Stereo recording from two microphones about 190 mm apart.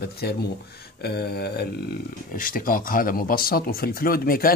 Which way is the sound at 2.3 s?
45° left (ahead or behind).